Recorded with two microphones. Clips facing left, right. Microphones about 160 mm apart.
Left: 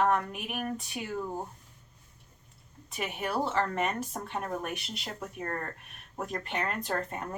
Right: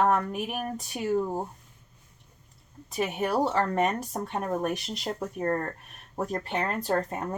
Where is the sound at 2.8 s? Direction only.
40° right (ahead or behind).